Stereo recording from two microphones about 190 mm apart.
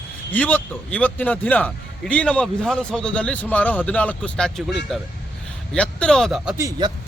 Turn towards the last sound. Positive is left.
turn(degrees=-15)  # may be behind; listen again after turning